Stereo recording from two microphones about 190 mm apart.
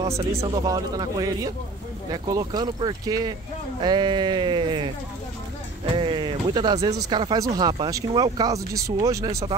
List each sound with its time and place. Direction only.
0.3 s speech: 15° right (ahead or behind)
5.9 s speech: 25° right (ahead or behind)